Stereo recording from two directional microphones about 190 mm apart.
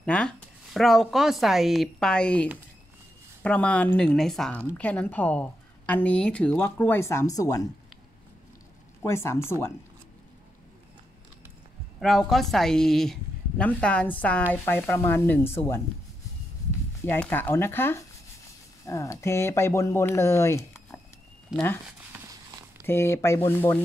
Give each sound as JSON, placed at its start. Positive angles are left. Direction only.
{"t": 0.0, "sound": "a woman's voice", "side_deg": 5}
{"t": 3.4, "sound": "a woman's voice", "side_deg": 5}
{"t": 9.0, "sound": "a woman's voice", "side_deg": 15}
{"t": 12.0, "sound": "a woman's voice", "side_deg": 0}
{"t": 17.0, "sound": "a woman's voice", "side_deg": 10}
{"t": 21.5, "sound": "a woman's voice", "side_deg": -5}
{"t": 22.8, "sound": "a woman's voice", "side_deg": 15}